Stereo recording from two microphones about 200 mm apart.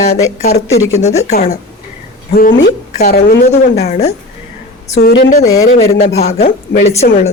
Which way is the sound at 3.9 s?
35° left (ahead or behind).